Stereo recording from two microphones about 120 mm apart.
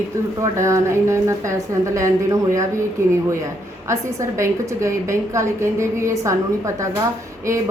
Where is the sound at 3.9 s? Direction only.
25° right (ahead or behind).